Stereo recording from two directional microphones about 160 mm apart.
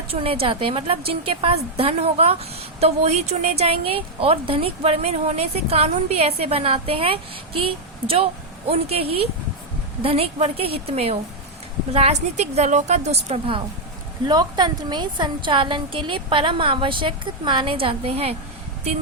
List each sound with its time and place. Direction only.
0.1 s a woman's voice: 35° right (ahead or behind)
12.4 s a woman's voice: 45° right (ahead or behind)
14.3 s a woman's voice: 25° right (ahead or behind)